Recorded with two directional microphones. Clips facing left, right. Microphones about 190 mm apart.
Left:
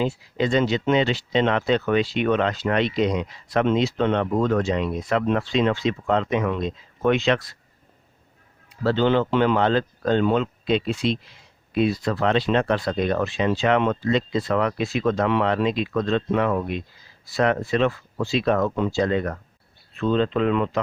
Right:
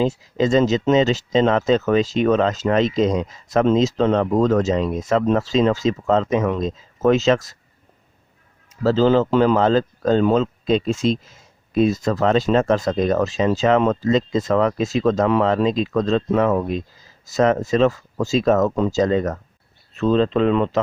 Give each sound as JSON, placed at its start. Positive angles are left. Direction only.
{"t": 0.0, "sound": "speech", "side_deg": -40}
{"t": 8.8, "sound": "speech", "side_deg": -40}